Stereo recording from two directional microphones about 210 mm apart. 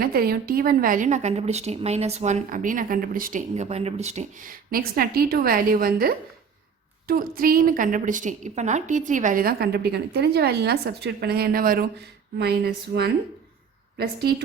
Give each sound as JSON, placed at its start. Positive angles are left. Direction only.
{"t": 0.0, "sound": "a woman's voice", "side_deg": -45}